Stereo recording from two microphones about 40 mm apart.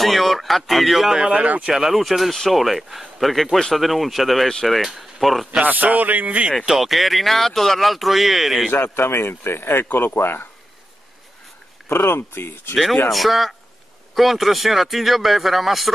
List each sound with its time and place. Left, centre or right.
0.0 s speech: centre
1.3 s speech: right
1.7 s speech: centre
3.8 s speech: centre
5.6 s speech: right
6.7 s speech: centre
8.7 s speech: left
11.9 s speech: left
13.1 s speech: centre